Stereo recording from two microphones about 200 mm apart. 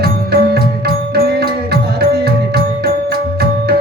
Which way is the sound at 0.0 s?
50° right (ahead or behind).